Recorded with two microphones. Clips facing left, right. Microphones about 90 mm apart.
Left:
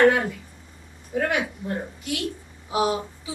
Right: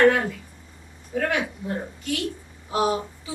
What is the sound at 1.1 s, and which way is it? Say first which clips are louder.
Speech: even; 10° left (ahead or behind).